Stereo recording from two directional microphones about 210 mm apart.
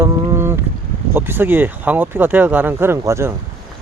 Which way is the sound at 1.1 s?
10° right (ahead or behind).